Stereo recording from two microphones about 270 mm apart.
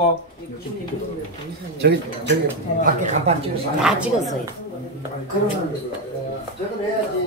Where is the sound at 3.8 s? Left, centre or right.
Centre.